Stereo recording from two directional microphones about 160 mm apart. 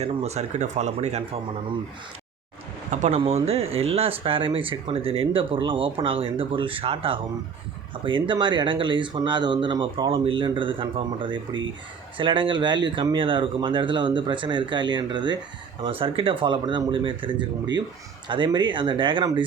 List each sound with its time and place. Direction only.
0.0 s speech: 40° right (ahead or behind)
2.9 s speech: 50° right (ahead or behind); by 19.5 s 30° right (ahead or behind)